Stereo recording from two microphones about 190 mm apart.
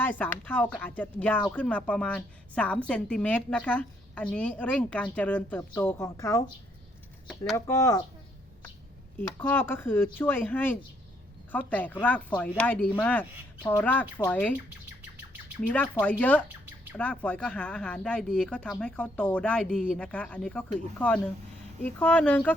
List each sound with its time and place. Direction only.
0.0 s speech: 10° left (ahead or behind)
7.5 s speech: 15° left (ahead or behind)
9.4 s speech: 10° left (ahead or behind)
16.2 s speech: 10° left (ahead or behind)